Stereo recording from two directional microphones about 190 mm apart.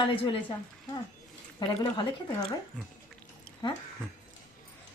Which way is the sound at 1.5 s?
25° left (ahead or behind).